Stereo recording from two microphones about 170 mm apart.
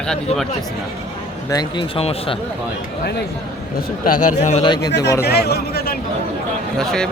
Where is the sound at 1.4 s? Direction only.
20° left (ahead or behind).